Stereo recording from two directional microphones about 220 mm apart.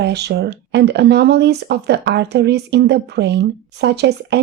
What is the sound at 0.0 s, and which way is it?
Speech, 50° right (ahead or behind).